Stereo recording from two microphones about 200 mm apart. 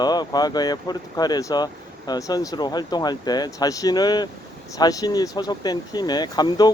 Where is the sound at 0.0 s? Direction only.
20° left (ahead or behind).